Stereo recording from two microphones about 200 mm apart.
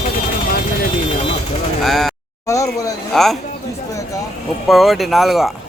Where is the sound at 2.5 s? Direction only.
15° left (ahead or behind).